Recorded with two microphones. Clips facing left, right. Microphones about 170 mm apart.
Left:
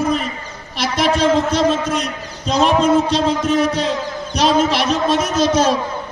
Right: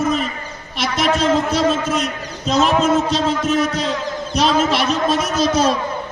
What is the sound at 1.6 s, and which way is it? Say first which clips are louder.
Speech: left 1 dB; 30° right (ahead or behind).